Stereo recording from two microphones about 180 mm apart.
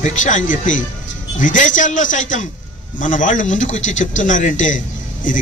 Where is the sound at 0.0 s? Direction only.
45° left (ahead or behind).